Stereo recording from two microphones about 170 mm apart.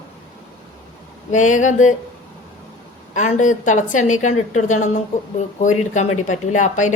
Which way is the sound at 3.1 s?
45° left (ahead or behind).